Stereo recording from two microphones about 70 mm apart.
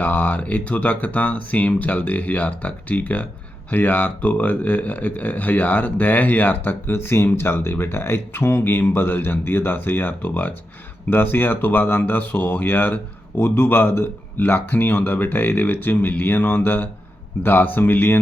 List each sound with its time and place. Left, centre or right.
0.0 s speech: left